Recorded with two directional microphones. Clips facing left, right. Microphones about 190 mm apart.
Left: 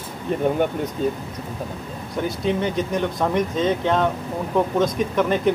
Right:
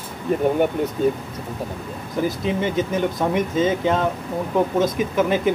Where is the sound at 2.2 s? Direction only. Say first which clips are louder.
Even; centre (ahead or behind).